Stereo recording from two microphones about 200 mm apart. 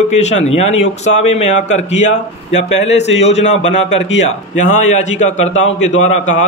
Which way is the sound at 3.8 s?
65° left (ahead or behind).